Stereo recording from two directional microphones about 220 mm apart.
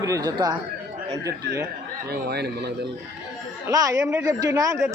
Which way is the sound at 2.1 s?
45° right (ahead or behind).